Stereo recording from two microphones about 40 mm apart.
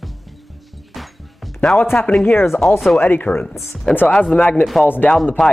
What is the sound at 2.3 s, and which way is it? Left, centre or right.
Speech, left.